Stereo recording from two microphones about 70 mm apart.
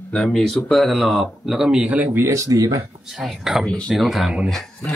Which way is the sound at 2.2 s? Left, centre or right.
Right.